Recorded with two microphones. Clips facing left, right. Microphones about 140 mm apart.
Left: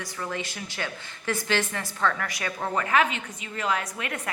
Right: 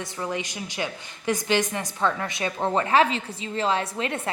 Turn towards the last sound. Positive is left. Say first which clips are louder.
# right 5 dB
turn(degrees=-30)  # may be behind; listen again after turning